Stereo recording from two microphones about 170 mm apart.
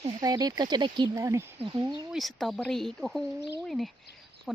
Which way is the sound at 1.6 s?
25° right (ahead or behind).